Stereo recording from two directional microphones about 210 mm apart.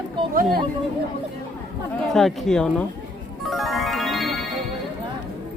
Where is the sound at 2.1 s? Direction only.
Centre (ahead or behind).